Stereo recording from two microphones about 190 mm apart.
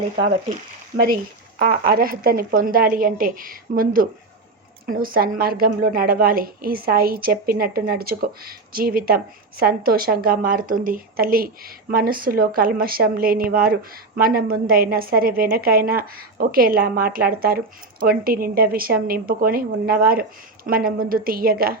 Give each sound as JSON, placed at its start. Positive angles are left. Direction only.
{"t": 1.5, "sound": "a woman's voice", "side_deg": -50}